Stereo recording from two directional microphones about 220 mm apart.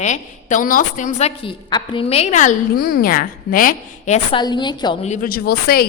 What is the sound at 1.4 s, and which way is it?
A woman's voice, 20° left (ahead or behind).